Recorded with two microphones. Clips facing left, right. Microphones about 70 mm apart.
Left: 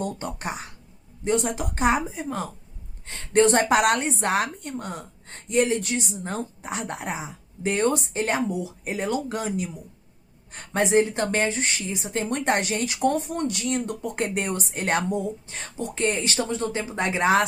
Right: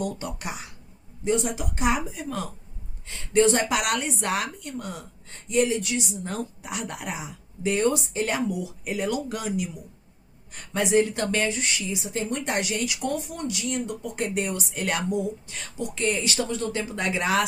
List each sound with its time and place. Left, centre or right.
0.0 s a sound: left
1.2 s a woman's voice: left
3.1 s a woman's voice: left